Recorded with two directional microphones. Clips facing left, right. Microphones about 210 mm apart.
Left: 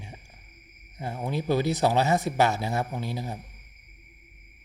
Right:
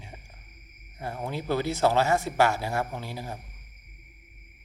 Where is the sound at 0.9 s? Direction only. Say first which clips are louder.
Left 2 dB; 15° left (ahead or behind).